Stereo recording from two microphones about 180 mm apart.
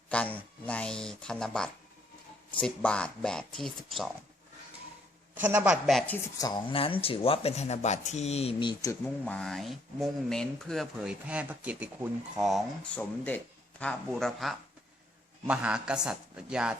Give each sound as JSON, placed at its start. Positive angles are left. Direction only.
{"t": 0.1, "sound": "a sound", "side_deg": 5}
{"t": 2.6, "sound": "speech", "side_deg": 5}
{"t": 5.3, "sound": "speech", "side_deg": -10}
{"t": 6.2, "sound": "speech", "side_deg": 20}
{"t": 8.9, "sound": "speech", "side_deg": 10}